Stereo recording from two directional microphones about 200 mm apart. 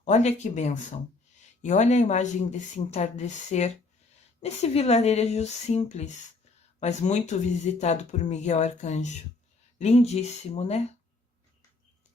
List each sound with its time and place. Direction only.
0.0 s speech: 35° left (ahead or behind)